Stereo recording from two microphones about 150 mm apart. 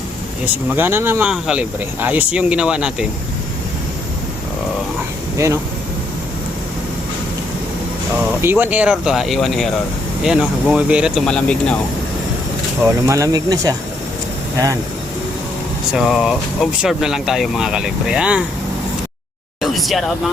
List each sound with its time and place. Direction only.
0.7 s speech: 15° right (ahead or behind)
5.4 s speech: 20° right (ahead or behind)
8.4 s speech: 15° right (ahead or behind); by 11.8 s 5° left (ahead or behind)
12.8 s speech: 20° right (ahead or behind)
15.9 s speech: centre (ahead or behind)
19.6 s speech: centre (ahead or behind)